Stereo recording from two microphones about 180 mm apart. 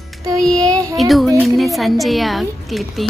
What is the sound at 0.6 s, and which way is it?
Speech, 20° right (ahead or behind).